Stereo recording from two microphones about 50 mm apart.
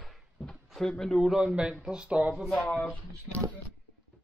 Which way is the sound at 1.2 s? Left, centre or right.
Centre.